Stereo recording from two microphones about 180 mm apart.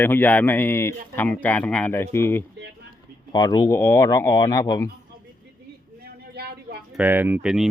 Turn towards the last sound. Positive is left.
turn(degrees=-5)  # may be behind; listen again after turning